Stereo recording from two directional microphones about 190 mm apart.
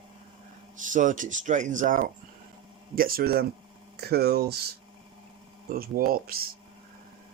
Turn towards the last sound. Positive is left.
turn(degrees=-50)  # may be behind; listen again after turning